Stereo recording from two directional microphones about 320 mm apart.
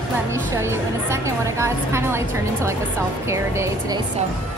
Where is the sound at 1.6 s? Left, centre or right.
Centre.